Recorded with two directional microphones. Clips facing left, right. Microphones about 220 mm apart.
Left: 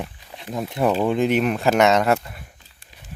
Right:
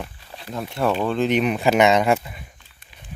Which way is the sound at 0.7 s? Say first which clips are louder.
Left 2 dB; 15° left (ahead or behind).